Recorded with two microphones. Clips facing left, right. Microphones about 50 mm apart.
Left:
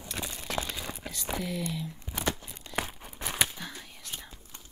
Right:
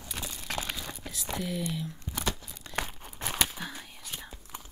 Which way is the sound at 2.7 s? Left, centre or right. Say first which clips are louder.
Left 1 dB; centre.